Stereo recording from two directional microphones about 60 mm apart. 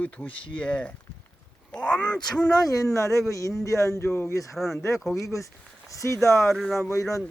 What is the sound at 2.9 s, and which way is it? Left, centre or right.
Speech, left.